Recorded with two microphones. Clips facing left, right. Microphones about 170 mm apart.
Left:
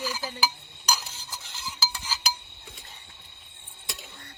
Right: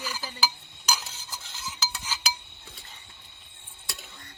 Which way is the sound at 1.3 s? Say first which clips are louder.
Even; 5° left (ahead or behind).